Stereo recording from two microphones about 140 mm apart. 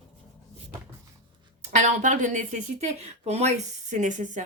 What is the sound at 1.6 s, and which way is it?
A woman's voice, 60° right (ahead or behind).